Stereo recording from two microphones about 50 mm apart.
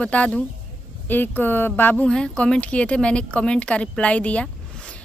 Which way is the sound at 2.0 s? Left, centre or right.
Centre.